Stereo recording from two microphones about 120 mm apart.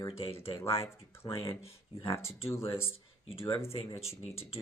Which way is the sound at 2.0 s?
25° left (ahead or behind).